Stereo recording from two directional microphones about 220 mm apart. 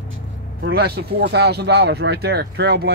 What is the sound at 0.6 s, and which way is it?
Speech, 45° right (ahead or behind).